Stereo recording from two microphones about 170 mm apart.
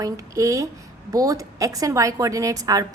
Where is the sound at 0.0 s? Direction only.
20° right (ahead or behind).